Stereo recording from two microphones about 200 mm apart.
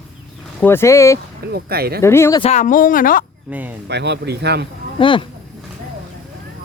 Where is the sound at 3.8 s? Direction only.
60° right (ahead or behind).